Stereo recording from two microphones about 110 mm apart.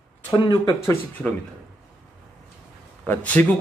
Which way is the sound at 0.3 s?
40° left (ahead or behind).